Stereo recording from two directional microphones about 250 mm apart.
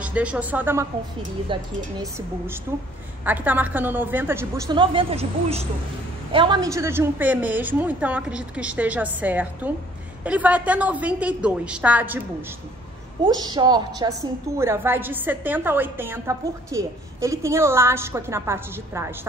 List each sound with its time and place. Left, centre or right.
0.0 s a woman's voice: centre